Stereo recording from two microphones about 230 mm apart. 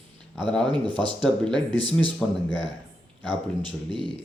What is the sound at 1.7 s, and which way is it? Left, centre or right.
Speech, left.